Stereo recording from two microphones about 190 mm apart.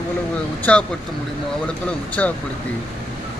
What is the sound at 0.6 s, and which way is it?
Speech, 5° left (ahead or behind).